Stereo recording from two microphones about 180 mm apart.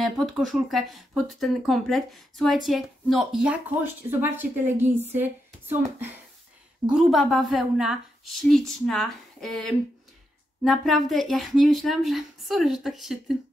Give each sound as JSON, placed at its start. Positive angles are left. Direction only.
{"t": 0.0, "sound": "speech", "side_deg": 0}